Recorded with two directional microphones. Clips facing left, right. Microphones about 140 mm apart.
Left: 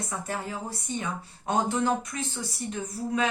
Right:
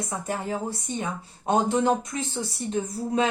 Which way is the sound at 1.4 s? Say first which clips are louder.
Right 4 dB; 20° right (ahead or behind).